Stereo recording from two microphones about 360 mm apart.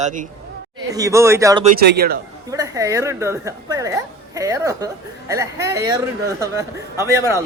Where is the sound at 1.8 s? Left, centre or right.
Right.